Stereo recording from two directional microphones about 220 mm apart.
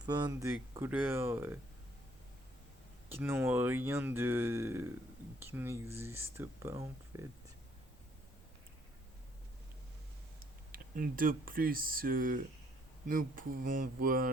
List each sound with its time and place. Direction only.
0.0 s speech: 20° right (ahead or behind)
3.1 s speech: 10° right (ahead or behind)
10.4 s speech: 40° right (ahead or behind)